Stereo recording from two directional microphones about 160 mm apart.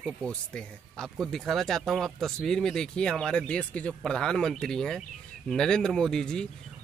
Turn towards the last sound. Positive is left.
turn(degrees=5)  # may be behind; listen again after turning